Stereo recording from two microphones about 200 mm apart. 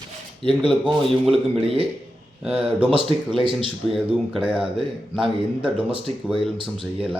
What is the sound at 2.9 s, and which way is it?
Speech, 25° right (ahead or behind).